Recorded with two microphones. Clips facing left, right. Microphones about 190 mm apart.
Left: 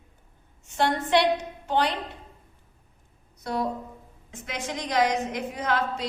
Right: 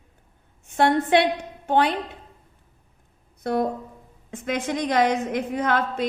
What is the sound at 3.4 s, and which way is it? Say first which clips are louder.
A woman's voice: right 5 dB; 55° right (ahead or behind).